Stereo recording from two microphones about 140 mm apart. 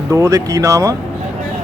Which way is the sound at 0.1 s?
20° right (ahead or behind).